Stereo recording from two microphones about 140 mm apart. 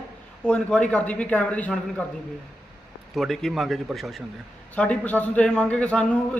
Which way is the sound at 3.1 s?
Centre (ahead or behind).